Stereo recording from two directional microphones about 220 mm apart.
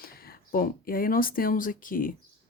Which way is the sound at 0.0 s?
40° left (ahead or behind).